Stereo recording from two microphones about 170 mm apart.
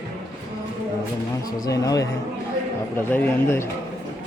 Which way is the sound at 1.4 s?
20° left (ahead or behind).